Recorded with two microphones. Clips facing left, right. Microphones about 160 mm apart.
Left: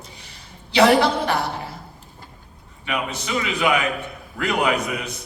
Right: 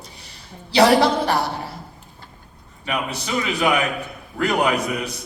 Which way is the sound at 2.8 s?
35° right (ahead or behind).